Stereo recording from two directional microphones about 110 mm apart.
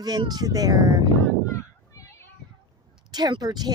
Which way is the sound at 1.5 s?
30° left (ahead or behind).